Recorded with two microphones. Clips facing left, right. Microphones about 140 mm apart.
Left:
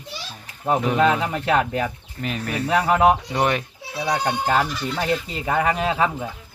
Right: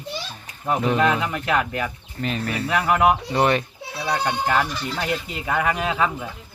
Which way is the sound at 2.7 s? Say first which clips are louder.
Left 2 dB; 30° left (ahead or behind).